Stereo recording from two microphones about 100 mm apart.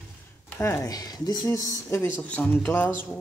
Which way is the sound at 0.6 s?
30° left (ahead or behind).